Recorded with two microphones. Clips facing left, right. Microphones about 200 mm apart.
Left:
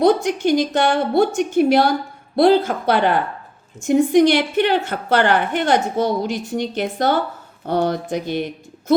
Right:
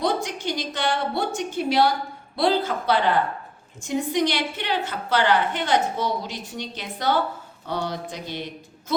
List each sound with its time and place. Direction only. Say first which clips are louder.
0.0 s a woman's voice: left 9 dB; 50° left (ahead or behind)